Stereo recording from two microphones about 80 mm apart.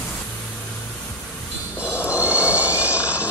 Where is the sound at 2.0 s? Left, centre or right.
Centre.